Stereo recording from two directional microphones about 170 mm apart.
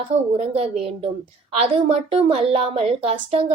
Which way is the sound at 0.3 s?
40° right (ahead or behind).